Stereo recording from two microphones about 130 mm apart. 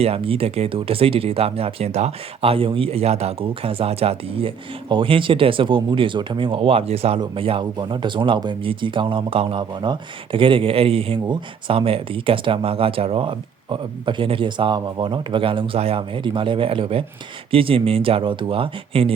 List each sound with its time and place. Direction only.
0.0 s speech: 50° right (ahead or behind)